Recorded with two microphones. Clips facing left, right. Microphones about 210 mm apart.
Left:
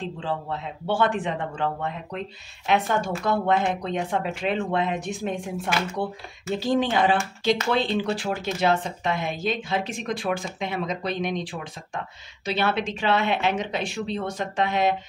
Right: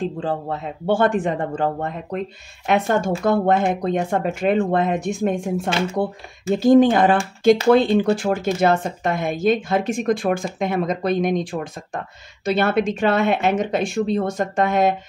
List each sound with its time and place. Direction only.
0.0 s speech: 45° right (ahead or behind)
5.7 s speech: 25° right (ahead or behind)
6.5 s speech: 50° right (ahead or behind)